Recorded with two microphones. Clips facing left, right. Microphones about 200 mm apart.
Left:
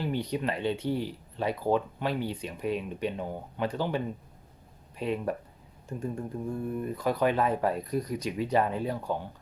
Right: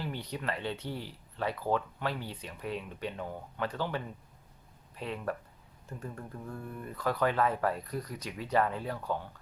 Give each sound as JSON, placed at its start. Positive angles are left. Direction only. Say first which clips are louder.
{"t": 0.0, "sound": "speech", "louder": "left 7 dB", "side_deg": 15}